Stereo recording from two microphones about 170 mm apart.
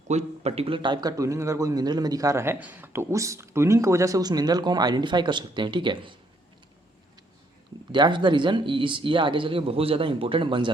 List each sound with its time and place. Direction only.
0.1 s a man's voice: 40° right (ahead or behind)
7.9 s a man's voice: 25° right (ahead or behind)